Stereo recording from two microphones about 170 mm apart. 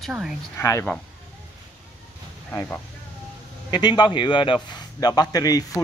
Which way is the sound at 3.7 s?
25° left (ahead or behind).